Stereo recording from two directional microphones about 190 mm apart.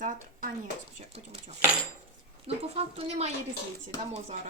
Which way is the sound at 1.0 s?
30° right (ahead or behind).